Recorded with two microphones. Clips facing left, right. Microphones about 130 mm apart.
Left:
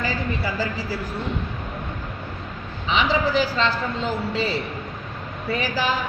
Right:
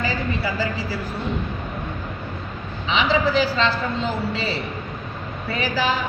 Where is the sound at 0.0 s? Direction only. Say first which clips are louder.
Right 1 dB; 45° left (ahead or behind).